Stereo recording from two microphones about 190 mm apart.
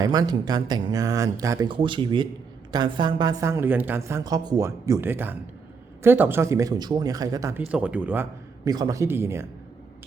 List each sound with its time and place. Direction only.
0.0 s a woman's voice: 20° right (ahead or behind)
7.6 s a woman's voice: 5° right (ahead or behind)